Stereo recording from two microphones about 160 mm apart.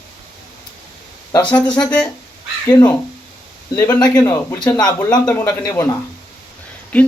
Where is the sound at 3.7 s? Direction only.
10° left (ahead or behind).